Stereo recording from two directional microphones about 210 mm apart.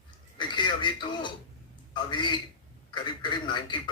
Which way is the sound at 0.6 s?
20° left (ahead or behind).